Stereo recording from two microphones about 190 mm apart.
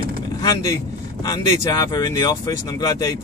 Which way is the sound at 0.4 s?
20° left (ahead or behind).